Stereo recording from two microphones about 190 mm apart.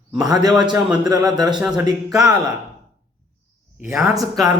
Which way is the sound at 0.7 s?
5° right (ahead or behind).